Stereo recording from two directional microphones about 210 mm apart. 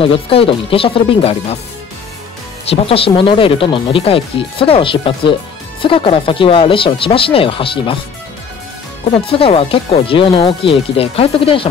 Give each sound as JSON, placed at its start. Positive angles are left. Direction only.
{"t": 0.0, "sound": "speech", "side_deg": 25}
{"t": 2.7, "sound": "speech", "side_deg": 25}
{"t": 9.1, "sound": "speech", "side_deg": 25}